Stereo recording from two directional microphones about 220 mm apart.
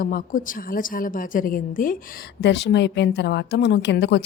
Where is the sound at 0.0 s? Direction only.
40° left (ahead or behind).